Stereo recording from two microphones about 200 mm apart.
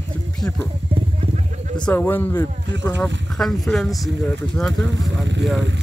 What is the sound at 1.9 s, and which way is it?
Speech, 10° left (ahead or behind).